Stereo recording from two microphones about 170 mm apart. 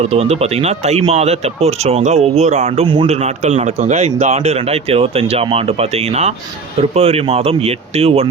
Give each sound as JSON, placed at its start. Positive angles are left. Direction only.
{"t": 0.1, "sound": "speech", "side_deg": -35}